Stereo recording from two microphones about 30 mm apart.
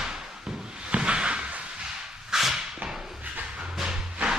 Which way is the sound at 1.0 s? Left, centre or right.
Right.